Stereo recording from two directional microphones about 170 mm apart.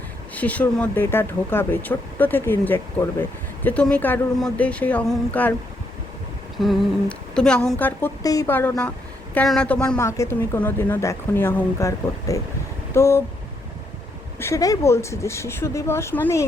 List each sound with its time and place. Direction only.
0.3 s speech: 10° left (ahead or behind)
6.6 s speech: centre (ahead or behind); by 12.4 s 20° left (ahead or behind)
12.9 s a sound: 15° left (ahead or behind)
14.3 s speech: 15° left (ahead or behind)